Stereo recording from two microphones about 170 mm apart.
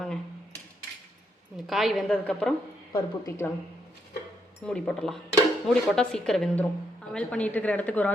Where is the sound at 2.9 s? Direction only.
15° left (ahead or behind).